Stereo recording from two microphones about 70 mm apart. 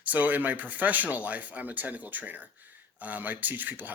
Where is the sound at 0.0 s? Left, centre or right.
Right.